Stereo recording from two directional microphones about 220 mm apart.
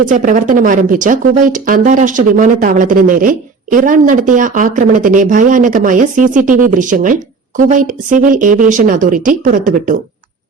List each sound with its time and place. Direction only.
0.0 s speech: 35° right (ahead or behind)